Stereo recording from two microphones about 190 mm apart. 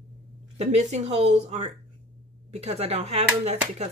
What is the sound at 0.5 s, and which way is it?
Speech, 35° right (ahead or behind).